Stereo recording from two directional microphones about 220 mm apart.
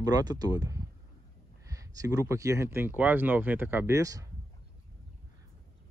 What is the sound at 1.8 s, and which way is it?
Speech, 15° right (ahead or behind).